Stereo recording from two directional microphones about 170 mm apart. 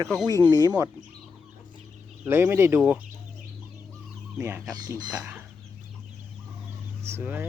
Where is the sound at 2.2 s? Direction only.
15° right (ahead or behind).